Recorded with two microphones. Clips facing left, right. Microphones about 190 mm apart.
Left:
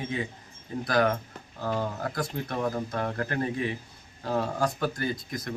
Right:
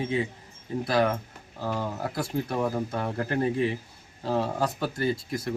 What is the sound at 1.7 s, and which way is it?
Speech, 5° right (ahead or behind).